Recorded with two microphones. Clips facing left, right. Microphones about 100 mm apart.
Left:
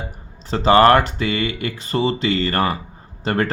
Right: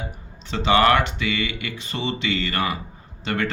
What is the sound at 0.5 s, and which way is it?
Speech, 40° left (ahead or behind).